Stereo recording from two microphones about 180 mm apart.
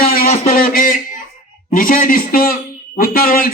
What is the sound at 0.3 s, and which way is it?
A man's voice, 50° left (ahead or behind).